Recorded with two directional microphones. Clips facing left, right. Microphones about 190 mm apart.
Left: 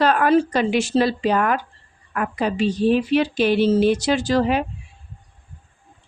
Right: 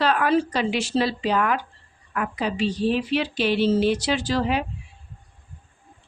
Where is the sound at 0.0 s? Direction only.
45° left (ahead or behind).